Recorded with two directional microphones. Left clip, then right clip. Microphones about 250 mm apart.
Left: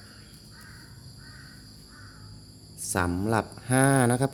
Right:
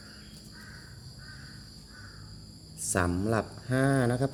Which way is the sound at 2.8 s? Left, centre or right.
Centre.